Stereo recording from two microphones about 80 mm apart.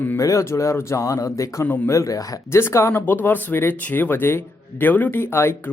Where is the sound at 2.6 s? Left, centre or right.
Left.